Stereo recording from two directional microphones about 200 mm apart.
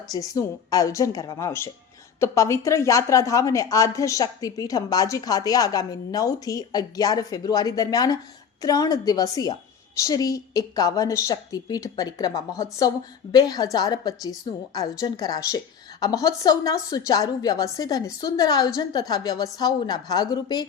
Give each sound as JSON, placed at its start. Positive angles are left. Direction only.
{"t": 0.1, "sound": "a woman's voice", "side_deg": 20}